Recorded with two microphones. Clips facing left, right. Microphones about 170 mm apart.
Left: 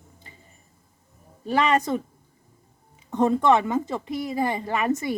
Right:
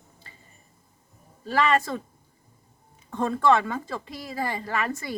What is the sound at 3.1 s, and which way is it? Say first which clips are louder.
A woman's voice: left 3 dB; 20° left (ahead or behind).